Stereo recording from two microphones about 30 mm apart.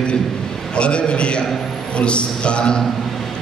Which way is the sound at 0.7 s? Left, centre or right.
Left.